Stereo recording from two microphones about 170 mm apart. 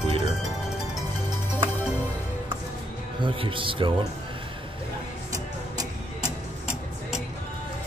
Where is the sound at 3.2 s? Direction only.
30° right (ahead or behind).